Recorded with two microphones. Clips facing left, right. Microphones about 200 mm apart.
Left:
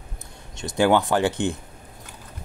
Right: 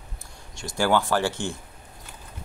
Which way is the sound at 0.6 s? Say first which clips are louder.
Left 4 dB; 20° left (ahead or behind).